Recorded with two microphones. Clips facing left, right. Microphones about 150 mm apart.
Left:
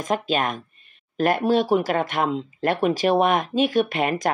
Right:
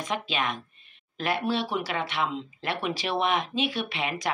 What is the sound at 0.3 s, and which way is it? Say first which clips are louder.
Speech: left 6 dB; 45° left (ahead or behind).